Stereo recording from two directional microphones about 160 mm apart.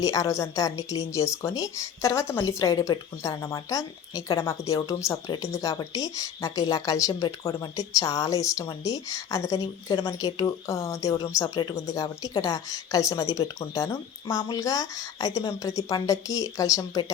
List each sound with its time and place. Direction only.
0.0 s speech: 20° left (ahead or behind)